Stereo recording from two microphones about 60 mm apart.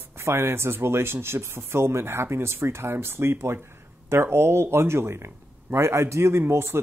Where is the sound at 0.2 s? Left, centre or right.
Right.